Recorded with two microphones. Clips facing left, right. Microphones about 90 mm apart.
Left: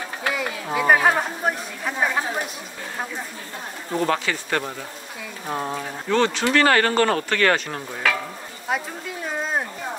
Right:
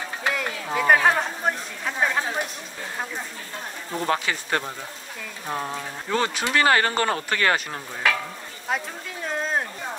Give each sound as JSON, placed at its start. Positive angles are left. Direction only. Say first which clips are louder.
{"t": 0.3, "sound": "speech", "louder": "left 1 dB", "side_deg": 5}
{"t": 4.1, "sound": "speech", "louder": "left 1 dB", "side_deg": -20}
{"t": 5.5, "sound": "speech", "louder": "left 2 dB", "side_deg": 10}
{"t": 6.0, "sound": "speech", "louder": "left 5 dB", "side_deg": -10}
{"t": 8.6, "sound": "a sound", "louder": "left 2 dB", "side_deg": 5}